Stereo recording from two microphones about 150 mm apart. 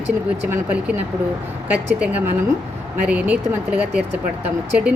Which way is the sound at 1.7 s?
10° right (ahead or behind).